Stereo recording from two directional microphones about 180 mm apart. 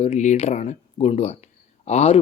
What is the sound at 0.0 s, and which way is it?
Speech, 40° left (ahead or behind).